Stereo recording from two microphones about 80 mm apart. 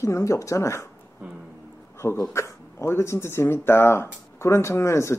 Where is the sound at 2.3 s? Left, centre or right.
Left.